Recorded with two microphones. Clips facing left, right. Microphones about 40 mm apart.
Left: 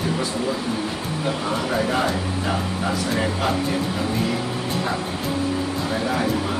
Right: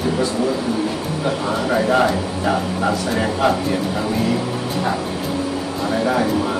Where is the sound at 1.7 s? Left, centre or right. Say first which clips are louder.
Right 7 dB; centre.